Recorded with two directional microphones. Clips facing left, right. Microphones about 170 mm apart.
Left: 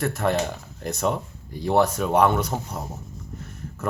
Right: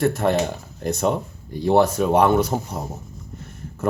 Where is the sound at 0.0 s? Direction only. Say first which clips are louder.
Right 4 dB; centre (ahead or behind).